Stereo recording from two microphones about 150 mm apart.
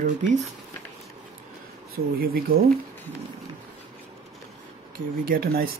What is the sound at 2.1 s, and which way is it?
Speech, 85° right.